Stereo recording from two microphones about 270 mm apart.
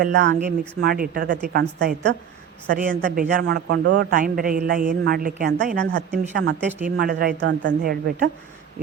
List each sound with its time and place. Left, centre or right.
0.0 s a man's voice: right